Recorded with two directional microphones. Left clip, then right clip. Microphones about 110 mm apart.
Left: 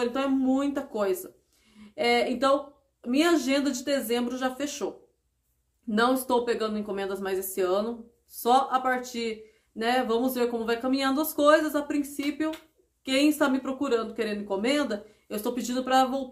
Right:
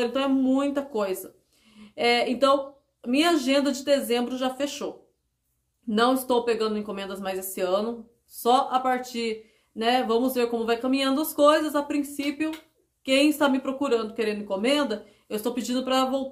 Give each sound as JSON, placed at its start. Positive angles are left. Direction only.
{"t": 0.0, "sound": "speech", "side_deg": -15}
{"t": 5.9, "sound": "speech", "side_deg": -15}